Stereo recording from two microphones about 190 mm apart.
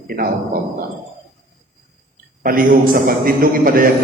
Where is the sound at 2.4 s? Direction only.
45° right (ahead or behind).